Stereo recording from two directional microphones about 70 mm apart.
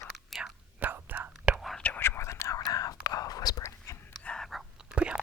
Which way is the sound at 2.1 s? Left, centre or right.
Left.